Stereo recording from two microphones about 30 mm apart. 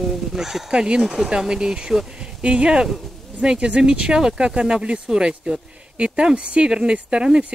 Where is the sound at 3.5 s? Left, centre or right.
Right.